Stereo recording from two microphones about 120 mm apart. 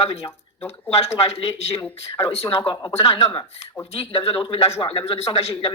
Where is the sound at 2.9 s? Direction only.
55° left (ahead or behind).